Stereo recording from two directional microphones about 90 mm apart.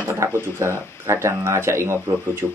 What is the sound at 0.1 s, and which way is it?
Speech, 30° right (ahead or behind).